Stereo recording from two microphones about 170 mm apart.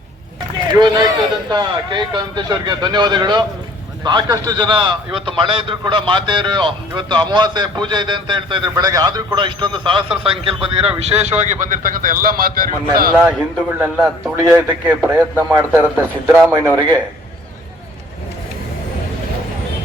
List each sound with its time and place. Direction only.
0.7 s a man's voice: 25° right (ahead or behind); by 13.1 s 55° right (ahead or behind)
13.1 s a man's voice: 10° right (ahead or behind)